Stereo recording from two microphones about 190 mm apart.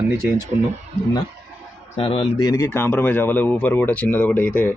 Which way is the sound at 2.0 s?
30° left (ahead or behind).